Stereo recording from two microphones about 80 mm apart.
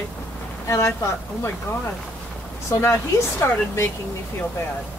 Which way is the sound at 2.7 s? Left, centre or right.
Left.